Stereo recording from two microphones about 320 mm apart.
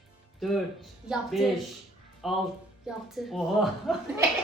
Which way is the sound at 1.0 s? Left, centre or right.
Centre.